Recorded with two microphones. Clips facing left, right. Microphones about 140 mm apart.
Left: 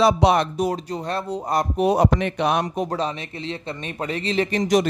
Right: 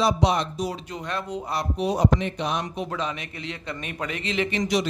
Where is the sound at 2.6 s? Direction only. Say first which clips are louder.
Left 5 dB; 40° left (ahead or behind).